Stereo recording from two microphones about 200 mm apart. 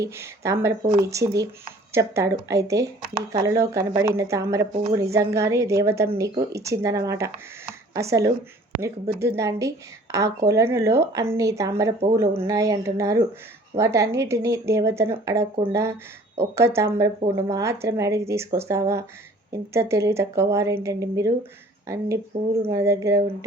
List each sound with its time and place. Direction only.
0.0 s a woman's voice: 15° right (ahead or behind)
22.3 s speech: 35° right (ahead or behind)
22.7 s a woman's voice: 15° right (ahead or behind)